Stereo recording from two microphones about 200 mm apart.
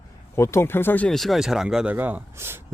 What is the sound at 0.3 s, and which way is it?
Speech, 15° left (ahead or behind).